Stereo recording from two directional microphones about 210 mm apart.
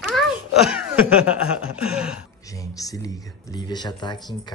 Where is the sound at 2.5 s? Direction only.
15° left (ahead or behind).